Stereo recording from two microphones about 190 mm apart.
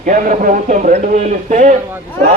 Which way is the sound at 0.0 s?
45° right (ahead or behind).